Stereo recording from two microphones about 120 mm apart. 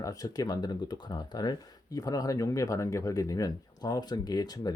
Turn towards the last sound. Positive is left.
turn(degrees=35)  # may be behind; listen again after turning